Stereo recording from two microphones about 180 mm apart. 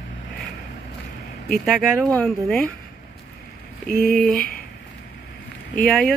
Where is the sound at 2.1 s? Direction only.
5° left (ahead or behind).